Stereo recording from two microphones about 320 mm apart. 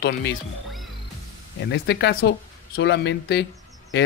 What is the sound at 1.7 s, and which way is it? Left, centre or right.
Speech, left.